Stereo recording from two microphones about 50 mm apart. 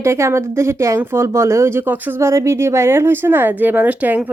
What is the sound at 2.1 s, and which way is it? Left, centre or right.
A woman's voice, right.